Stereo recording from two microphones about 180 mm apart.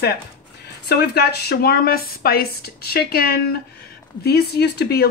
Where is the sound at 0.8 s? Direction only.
60° left (ahead or behind).